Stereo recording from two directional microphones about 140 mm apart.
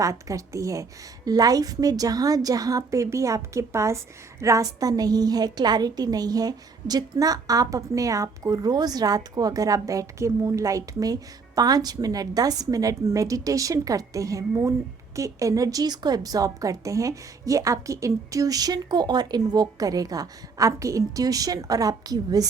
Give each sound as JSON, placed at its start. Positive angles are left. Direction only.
{"t": 0.0, "sound": "a woman's voice", "side_deg": -25}